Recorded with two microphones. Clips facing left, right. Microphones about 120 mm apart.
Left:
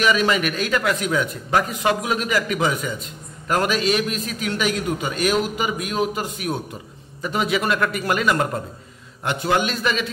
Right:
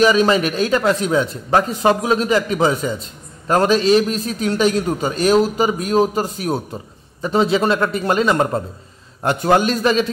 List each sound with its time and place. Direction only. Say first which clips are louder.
0.0 s a man's voice: right 5 dB; 35° right (ahead or behind)
9.2 s a man's voice: right 6 dB; 40° right (ahead or behind)